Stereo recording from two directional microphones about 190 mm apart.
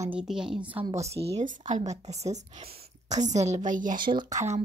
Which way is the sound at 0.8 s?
35° right (ahead or behind).